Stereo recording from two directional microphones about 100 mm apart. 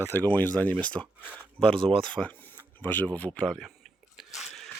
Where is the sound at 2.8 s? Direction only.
20° left (ahead or behind).